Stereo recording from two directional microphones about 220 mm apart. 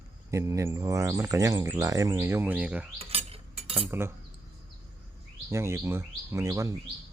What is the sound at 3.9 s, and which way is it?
Speech, 10° right (ahead or behind).